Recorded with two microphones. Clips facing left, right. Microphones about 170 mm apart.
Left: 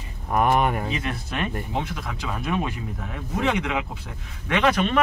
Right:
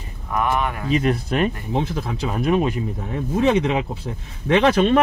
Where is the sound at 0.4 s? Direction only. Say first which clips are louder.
Left 1 dB; 45° left (ahead or behind).